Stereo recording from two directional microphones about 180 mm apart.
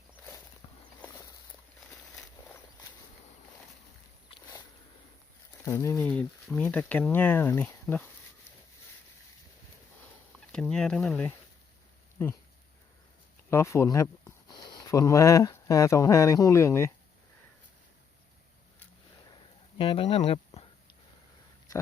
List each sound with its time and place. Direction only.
5.6 s speech: 15° left (ahead or behind)
10.5 s speech: 5° left (ahead or behind)
13.5 s speech: 15° left (ahead or behind)
19.8 s speech: 30° left (ahead or behind)